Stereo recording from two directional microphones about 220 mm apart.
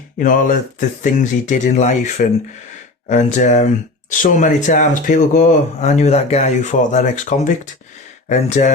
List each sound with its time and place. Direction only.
0.2 s speech: 35° left (ahead or behind)